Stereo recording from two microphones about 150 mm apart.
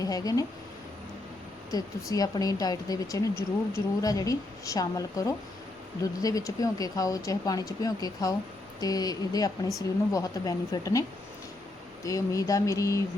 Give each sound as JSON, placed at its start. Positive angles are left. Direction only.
{"t": 0.0, "sound": "speech", "side_deg": 25}
{"t": 1.7, "sound": "a woman's voice", "side_deg": 25}
{"t": 12.0, "sound": "a woman's voice", "side_deg": 20}